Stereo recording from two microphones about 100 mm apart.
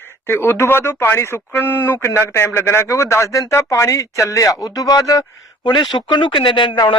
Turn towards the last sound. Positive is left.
turn(degrees=50)  # may be behind; listen again after turning